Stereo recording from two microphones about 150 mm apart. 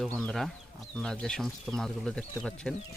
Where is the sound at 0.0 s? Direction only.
5° left (ahead or behind).